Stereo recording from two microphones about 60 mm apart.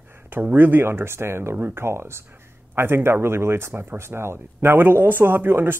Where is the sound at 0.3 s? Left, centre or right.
Right.